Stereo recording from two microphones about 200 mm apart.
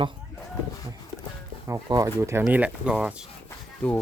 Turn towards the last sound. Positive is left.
turn(degrees=10)  # may be behind; listen again after turning